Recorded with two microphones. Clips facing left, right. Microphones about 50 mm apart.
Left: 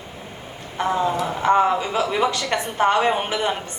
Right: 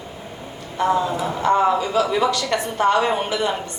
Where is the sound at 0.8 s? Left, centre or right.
Left.